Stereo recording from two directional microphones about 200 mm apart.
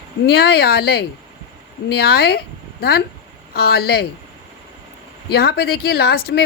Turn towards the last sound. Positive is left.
turn(degrees=50)  # may be behind; listen again after turning